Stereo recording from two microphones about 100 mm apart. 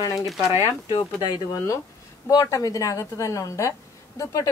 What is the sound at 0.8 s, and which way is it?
Speech, 50° left (ahead or behind).